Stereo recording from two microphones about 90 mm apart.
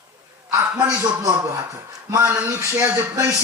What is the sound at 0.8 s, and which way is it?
A man's voice, 35° right (ahead or behind).